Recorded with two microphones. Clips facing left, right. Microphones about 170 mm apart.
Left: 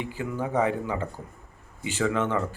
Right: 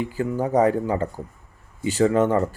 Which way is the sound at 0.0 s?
40° right (ahead or behind).